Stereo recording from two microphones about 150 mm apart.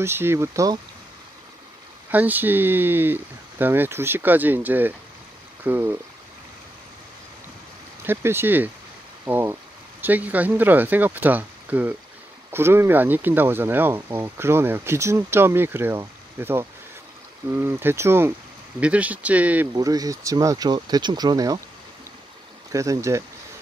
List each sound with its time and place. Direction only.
0.0 s speech: 15° right (ahead or behind)
2.0 s speech: 10° right (ahead or behind)
8.0 s speech: 15° right (ahead or behind)
19.7 s speech: 25° right (ahead or behind)
22.7 s speech: 20° right (ahead or behind)